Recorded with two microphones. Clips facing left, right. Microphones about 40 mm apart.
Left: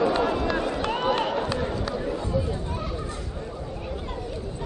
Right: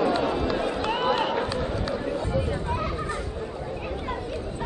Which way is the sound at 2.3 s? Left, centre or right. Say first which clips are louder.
Right 1 dB; right.